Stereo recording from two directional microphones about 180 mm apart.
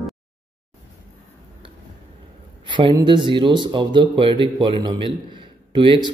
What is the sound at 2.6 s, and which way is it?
A man's voice, 25° right (ahead or behind).